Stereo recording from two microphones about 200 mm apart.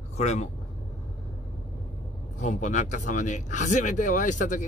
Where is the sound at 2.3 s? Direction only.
35° left (ahead or behind).